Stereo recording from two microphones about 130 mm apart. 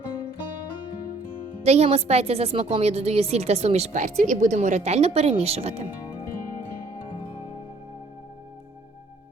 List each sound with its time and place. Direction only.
1.6 s a woman's voice: 55° right (ahead or behind)